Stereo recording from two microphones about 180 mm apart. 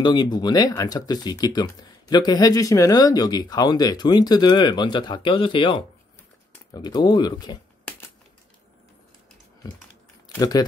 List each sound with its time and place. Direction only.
0.0 s speech: 25° left (ahead or behind)